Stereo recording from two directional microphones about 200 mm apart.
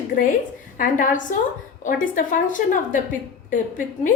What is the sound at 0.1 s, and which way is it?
A woman's voice, 40° left (ahead or behind).